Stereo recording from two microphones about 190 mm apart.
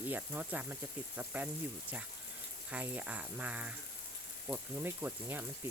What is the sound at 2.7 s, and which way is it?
Speech, 5° right (ahead or behind).